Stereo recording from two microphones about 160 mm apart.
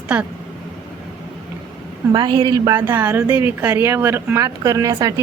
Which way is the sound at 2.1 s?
30° right (ahead or behind).